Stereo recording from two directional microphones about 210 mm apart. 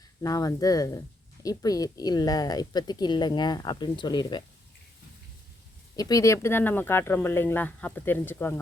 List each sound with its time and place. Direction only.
0.2 s speech: 15° left (ahead or behind)
6.0 s speech: 15° left (ahead or behind)